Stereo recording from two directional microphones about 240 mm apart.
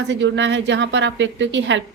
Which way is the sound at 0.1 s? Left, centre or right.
Right.